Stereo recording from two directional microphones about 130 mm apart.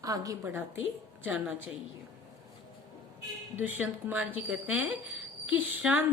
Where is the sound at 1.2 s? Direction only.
10° right (ahead or behind).